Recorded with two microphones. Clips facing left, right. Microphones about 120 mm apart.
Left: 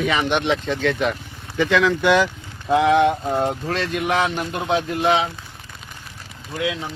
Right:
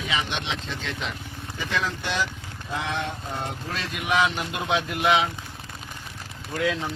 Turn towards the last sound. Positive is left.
turn(degrees=10)  # may be behind; listen again after turning